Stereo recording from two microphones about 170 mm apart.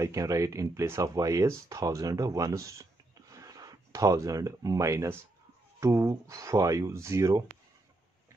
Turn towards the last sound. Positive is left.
turn(degrees=-15)  # may be behind; listen again after turning